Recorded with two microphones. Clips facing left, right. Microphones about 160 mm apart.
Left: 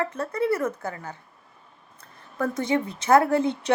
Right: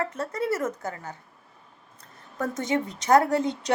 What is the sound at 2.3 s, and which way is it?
A woman's voice, 40° right (ahead or behind).